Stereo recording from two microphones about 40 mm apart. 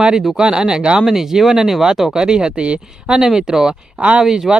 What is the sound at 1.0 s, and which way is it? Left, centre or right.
Speech, centre.